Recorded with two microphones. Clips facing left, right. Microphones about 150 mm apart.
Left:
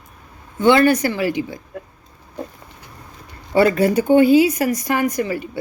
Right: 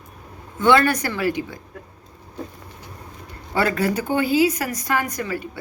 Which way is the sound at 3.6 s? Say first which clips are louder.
Left 6 dB; 25° left (ahead or behind).